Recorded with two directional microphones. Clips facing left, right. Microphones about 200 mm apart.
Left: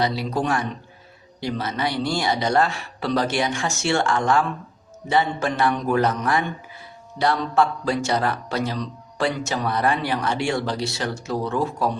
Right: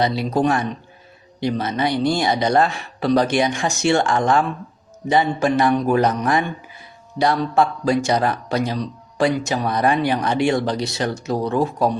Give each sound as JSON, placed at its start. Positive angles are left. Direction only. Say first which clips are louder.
{"t": 0.0, "sound": "a man's voice", "louder": "right 4 dB", "side_deg": -20}